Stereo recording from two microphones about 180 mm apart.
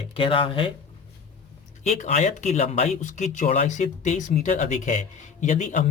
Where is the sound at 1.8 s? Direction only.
40° left (ahead or behind).